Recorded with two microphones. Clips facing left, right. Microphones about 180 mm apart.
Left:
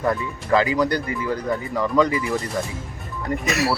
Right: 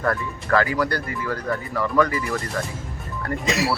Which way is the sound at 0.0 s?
15° left (ahead or behind).